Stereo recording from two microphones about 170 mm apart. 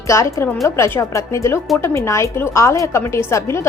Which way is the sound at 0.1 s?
20° left (ahead or behind).